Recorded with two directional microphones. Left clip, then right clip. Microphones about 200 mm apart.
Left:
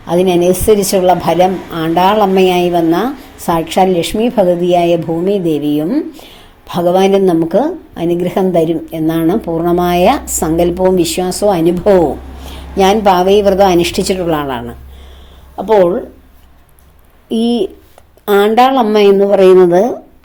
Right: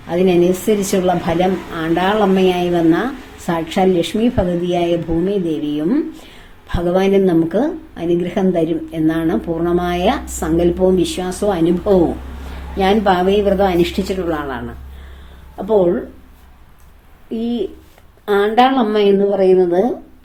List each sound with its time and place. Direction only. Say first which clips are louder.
0.1 s a woman's voice: left 4 dB; 25° left (ahead or behind)
12.7 s a woman's voice: left 5 dB; 30° left (ahead or behind)
17.2 s a woman's voice: left 7 dB; 40° left (ahead or behind)